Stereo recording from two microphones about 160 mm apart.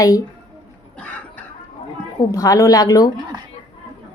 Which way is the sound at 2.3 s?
20° left (ahead or behind).